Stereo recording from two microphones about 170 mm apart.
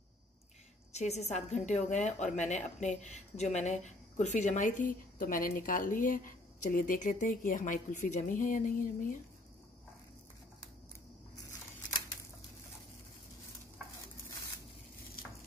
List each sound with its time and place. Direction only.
0.9 s a woman's voice: 40° left (ahead or behind)